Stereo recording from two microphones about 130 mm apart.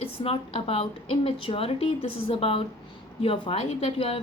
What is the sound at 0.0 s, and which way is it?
A woman's voice, 45° left (ahead or behind).